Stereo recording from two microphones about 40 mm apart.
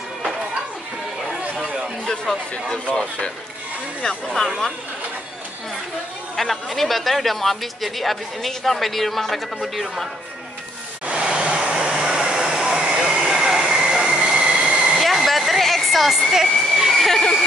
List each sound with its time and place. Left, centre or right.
2.9 s speech: left
6.3 s speech: centre
11.1 s hair dryer: right
15.0 s a sound: centre
16.9 s a sound: centre
17.2 s speech: centre